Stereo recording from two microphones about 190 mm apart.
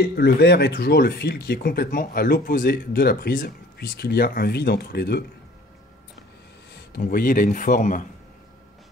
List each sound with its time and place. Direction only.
0.1 s speech: 60° left (ahead or behind)
7.0 s speech: 50° left (ahead or behind)